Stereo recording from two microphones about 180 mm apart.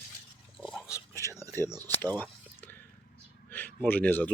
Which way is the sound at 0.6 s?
5° left (ahead or behind).